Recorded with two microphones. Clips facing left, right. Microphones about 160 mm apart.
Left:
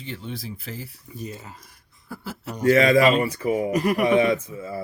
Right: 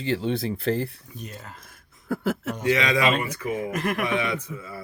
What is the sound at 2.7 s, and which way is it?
Speech, 45° left (ahead or behind).